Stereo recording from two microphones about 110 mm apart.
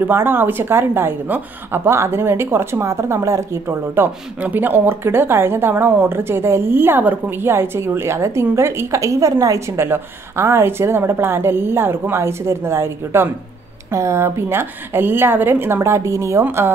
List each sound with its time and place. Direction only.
0.0 s a woman's voice: 20° right (ahead or behind)